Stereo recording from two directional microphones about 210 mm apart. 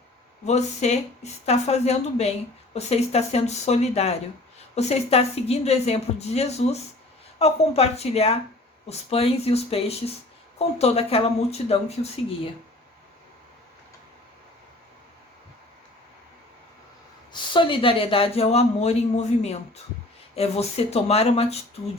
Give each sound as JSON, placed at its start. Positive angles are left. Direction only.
{"t": 0.4, "sound": "speech", "side_deg": 30}
{"t": 17.3, "sound": "speech", "side_deg": 20}